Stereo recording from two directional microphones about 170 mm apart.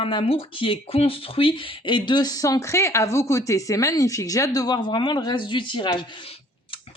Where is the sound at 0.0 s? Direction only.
30° left (ahead or behind).